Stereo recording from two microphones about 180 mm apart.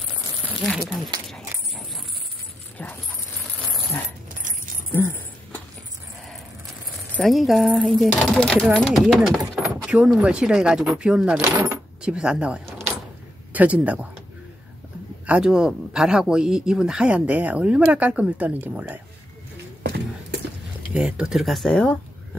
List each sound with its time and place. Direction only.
0.7 s speech: 5° right (ahead or behind)
1.2 s dog: centre (ahead or behind)
2.8 s keys jangling: 5° left (ahead or behind)
4.9 s a sound: 10° left (ahead or behind)
7.1 s speech: 5° left (ahead or behind)
15.2 s speech: 5° right (ahead or behind)
20.9 s speech: 5° right (ahead or behind)